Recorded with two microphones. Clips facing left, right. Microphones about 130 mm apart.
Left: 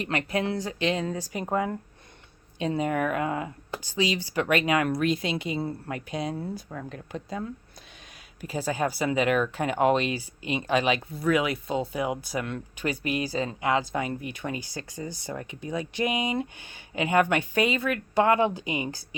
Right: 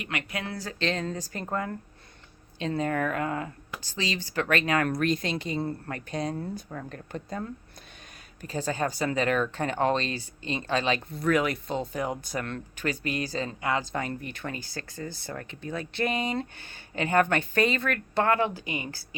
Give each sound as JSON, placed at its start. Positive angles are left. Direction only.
{"t": 0.0, "sound": "speech", "side_deg": 35}